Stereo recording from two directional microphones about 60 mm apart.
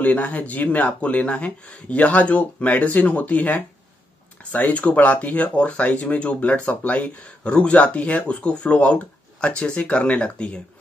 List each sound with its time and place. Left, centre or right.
0.0 s speech: left